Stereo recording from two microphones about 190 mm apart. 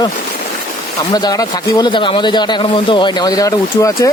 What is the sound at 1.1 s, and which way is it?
Speech, 20° left (ahead or behind).